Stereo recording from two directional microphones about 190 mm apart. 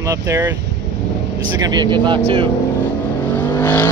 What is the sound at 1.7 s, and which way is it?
Speech, 25° right (ahead or behind).